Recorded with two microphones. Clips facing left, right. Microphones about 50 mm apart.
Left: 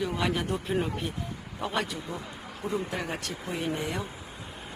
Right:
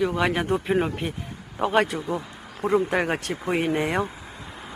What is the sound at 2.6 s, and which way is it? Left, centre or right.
Speech, right.